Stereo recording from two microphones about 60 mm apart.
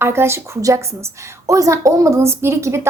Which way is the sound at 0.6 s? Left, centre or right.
Right.